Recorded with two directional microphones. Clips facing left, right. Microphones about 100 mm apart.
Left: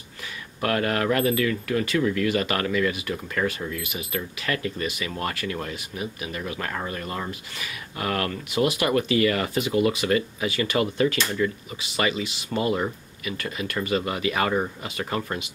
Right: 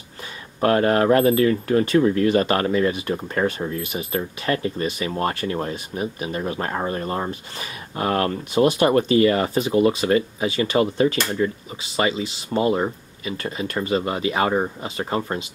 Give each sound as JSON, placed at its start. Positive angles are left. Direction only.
{"t": 0.6, "sound": "speech", "side_deg": -30}